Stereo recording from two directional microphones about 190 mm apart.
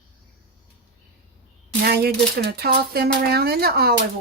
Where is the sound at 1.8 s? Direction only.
55° right (ahead or behind).